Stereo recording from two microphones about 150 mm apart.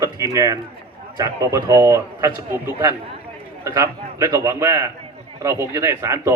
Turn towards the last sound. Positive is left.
turn(degrees=-20)  # may be behind; listen again after turning